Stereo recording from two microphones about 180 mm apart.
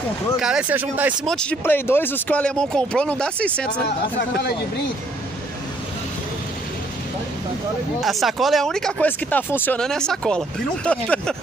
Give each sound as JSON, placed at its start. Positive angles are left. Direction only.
{"t": 0.4, "sound": "speech", "side_deg": -5}
{"t": 1.2, "sound": "speech", "side_deg": 5}
{"t": 4.2, "sound": "speech", "side_deg": 65}
{"t": 8.0, "sound": "speech", "side_deg": 0}